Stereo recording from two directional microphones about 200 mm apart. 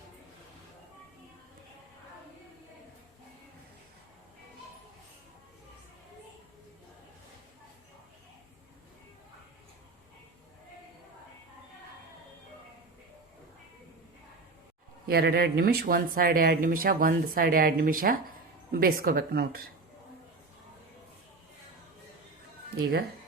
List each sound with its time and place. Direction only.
15.0 s speech: 50° right (ahead or behind)
22.7 s speech: 50° right (ahead or behind)